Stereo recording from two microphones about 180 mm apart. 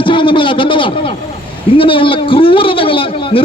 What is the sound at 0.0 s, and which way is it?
A man's voice, 30° left (ahead or behind).